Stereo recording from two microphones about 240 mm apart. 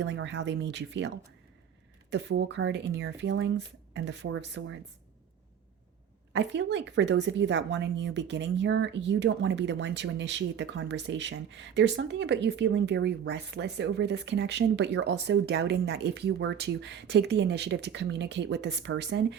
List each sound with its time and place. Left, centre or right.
0.0 s speech: right
6.3 s speech: right